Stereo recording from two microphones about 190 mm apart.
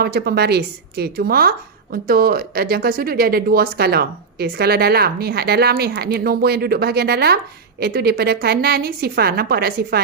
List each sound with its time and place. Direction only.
0.0 s speech: 55° right (ahead or behind)